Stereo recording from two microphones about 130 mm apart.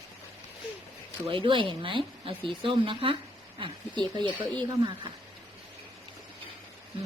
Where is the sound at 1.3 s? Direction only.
40° right (ahead or behind).